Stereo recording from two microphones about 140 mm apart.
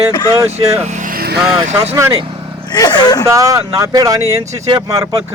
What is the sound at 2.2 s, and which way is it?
Vehicle, 35° right (ahead or behind).